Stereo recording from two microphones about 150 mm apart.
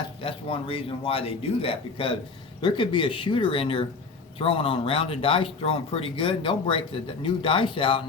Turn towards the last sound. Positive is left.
turn(degrees=35)  # may be behind; listen again after turning